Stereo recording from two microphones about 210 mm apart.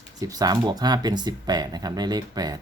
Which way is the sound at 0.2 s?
15° right (ahead or behind).